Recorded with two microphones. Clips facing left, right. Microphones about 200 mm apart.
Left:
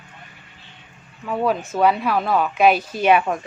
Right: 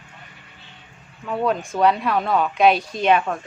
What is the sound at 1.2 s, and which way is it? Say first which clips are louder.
A woman's voice: left 1 dB; 5° left (ahead or behind).